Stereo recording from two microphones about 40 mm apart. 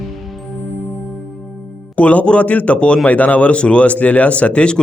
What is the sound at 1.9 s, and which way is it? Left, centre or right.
A man's voice, left.